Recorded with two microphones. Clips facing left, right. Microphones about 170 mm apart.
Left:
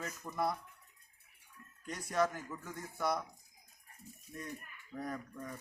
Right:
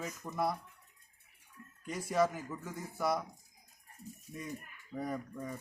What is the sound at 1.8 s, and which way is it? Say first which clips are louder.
A man's voice: right 3 dB; 5° right (ahead or behind).